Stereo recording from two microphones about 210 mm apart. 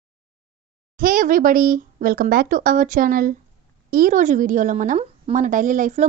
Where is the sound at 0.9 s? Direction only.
40° right (ahead or behind).